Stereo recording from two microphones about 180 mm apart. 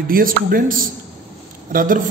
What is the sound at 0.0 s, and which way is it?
A man's voice, 55° right (ahead or behind).